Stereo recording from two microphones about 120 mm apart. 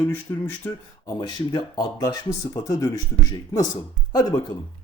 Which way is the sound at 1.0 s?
30° left (ahead or behind).